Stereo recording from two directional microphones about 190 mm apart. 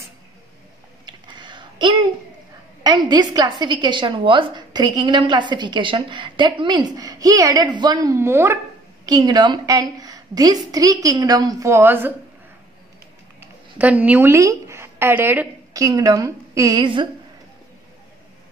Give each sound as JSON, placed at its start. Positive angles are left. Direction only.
{"t": 1.0, "sound": "a sound", "side_deg": -25}
{"t": 2.8, "sound": "a woman's voice", "side_deg": -20}
{"t": 13.7, "sound": "a woman's voice", "side_deg": -10}